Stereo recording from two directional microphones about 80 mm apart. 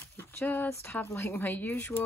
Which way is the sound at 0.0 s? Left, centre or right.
Left.